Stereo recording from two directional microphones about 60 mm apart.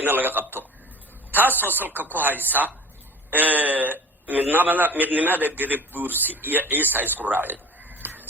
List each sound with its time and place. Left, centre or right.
0.0 s a man's voice: right